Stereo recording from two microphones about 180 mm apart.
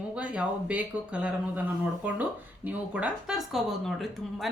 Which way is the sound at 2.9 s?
5° right (ahead or behind).